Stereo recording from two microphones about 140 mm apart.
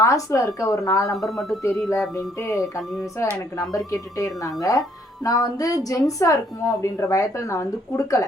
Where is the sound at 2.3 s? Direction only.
20° left (ahead or behind).